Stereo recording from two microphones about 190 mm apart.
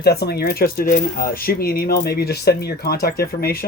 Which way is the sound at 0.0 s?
55° left (ahead or behind).